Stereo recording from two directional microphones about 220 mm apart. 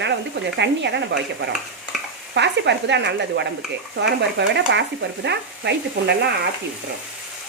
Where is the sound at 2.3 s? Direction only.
50° right (ahead or behind).